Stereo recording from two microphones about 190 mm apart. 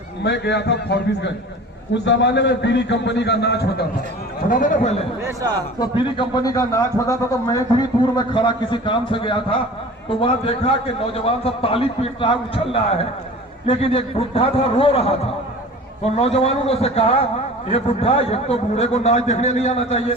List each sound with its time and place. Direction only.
0.2 s a man's voice: 65° left (ahead or behind)
4.4 s speech: 45° left (ahead or behind)
5.2 s a man's voice: 20° right (ahead or behind)
5.8 s speech: 25° left (ahead or behind)
13.7 s a man's voice: 30° left (ahead or behind)